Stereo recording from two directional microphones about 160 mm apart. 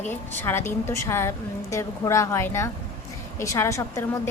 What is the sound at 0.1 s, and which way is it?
A woman's voice, 15° left (ahead or behind).